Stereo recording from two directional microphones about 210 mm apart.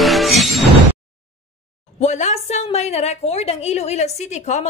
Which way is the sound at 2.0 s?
35° left (ahead or behind).